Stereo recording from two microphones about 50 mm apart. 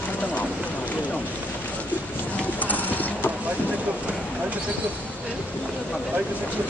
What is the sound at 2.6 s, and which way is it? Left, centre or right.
Clip-clop, left.